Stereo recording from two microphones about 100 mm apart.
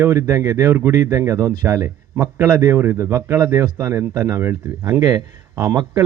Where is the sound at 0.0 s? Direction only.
30° right (ahead or behind).